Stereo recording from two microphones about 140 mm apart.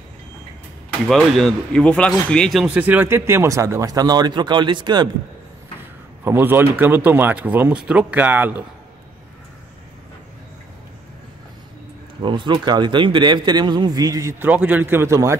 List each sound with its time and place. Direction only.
1.0 s speech: centre (ahead or behind)
2.7 s speech: 10° right (ahead or behind); by 5.1 s 30° right (ahead or behind)
6.2 s speech: 15° right (ahead or behind)
12.2 s speech: 35° right (ahead or behind)
14.4 s speech: 10° right (ahead or behind)